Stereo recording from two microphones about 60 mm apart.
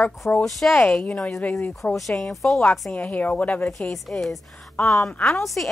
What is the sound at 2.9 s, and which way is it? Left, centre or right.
Speech, left.